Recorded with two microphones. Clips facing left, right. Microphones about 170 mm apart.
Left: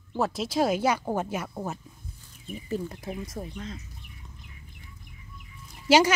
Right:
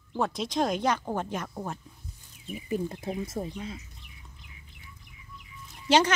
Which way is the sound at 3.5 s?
10° right (ahead or behind).